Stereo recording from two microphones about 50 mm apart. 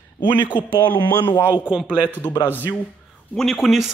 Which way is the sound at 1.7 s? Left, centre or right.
Right.